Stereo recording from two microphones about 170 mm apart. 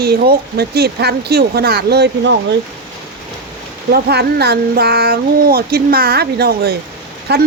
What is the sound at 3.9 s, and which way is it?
A child's voice, 75° right (ahead or behind).